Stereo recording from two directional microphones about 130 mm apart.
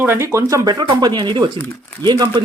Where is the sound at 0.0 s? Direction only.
20° right (ahead or behind).